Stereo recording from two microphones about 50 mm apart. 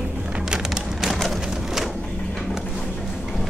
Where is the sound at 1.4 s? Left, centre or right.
Centre.